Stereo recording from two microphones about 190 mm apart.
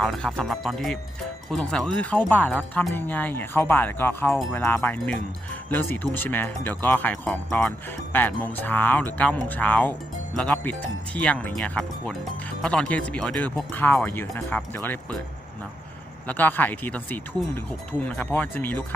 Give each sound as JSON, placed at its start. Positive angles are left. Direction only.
{"t": 0.0, "sound": "speech", "side_deg": 0}
{"t": 16.2, "sound": "speech", "side_deg": 10}